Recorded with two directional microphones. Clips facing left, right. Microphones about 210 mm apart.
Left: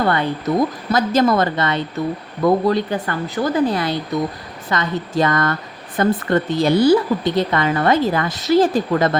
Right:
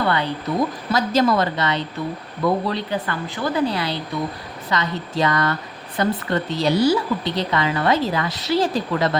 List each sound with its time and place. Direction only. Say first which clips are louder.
0.0 s speech: left 3 dB; 45° left (ahead or behind)